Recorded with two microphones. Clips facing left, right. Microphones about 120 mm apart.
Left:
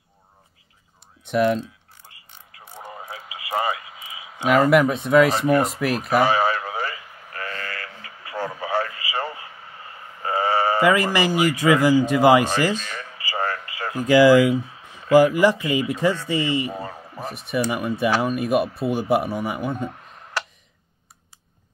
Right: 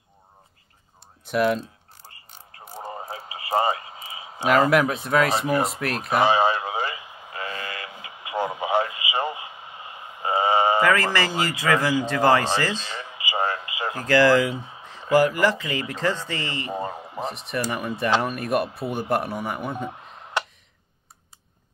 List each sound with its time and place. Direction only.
1.2 s speech: 5° right (ahead or behind)
2.0 s a sound: 30° right (ahead or behind)
2.8 s radio: 40° right (ahead or behind)
4.5 s speech: centre (ahead or behind)
6.2 s radio: 20° right (ahead or behind)
10.8 s speech: 15° left (ahead or behind)
12.7 s radio: 15° right (ahead or behind)
13.9 s speech: 15° left (ahead or behind)
14.5 s speech: 20° right (ahead or behind)
15.1 s speech: 15° left (ahead or behind)
16.7 s speech: 15° right (ahead or behind)
17.3 s speech: centre (ahead or behind)
20.4 s tick: 20° right (ahead or behind)